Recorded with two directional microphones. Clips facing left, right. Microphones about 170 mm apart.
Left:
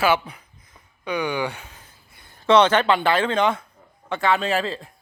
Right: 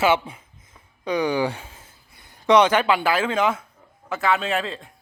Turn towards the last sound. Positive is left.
turn(degrees=0)  # may be behind; listen again after turning